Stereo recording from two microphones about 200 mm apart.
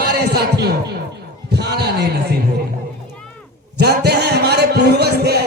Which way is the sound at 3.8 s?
55° right (ahead or behind).